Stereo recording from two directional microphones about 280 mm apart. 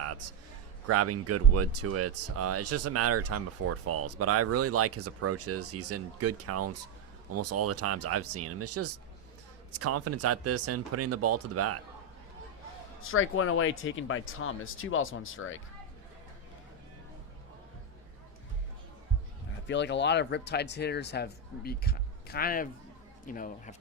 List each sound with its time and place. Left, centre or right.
0.9 s speech: right
13.0 s speech: left
19.6 s speech: left